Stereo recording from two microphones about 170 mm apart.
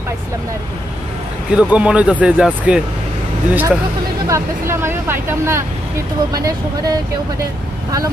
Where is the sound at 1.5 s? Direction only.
5° right (ahead or behind).